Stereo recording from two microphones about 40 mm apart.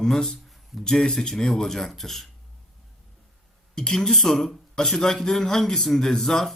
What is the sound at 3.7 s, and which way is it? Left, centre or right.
Speech, centre.